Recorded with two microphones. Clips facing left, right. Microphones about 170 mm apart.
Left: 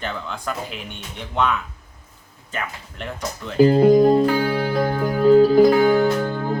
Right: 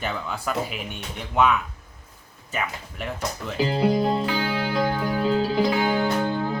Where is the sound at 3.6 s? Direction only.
45° left (ahead or behind).